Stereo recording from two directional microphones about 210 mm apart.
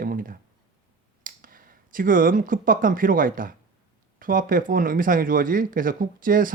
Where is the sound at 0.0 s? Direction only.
40° right (ahead or behind).